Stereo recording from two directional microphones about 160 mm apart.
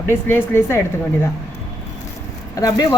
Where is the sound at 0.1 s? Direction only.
15° left (ahead or behind).